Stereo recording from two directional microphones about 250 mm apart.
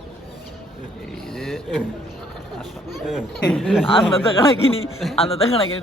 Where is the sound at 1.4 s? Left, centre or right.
Centre.